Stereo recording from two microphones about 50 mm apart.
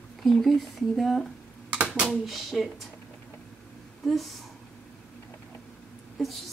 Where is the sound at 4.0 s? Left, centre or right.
Centre.